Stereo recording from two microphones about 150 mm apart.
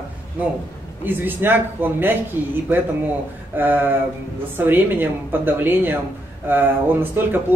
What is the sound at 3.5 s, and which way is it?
A man's voice, 15° right (ahead or behind).